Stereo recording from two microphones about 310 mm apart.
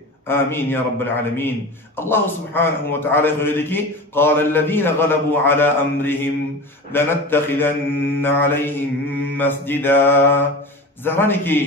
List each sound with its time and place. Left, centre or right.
0.3 s a man's voice: centre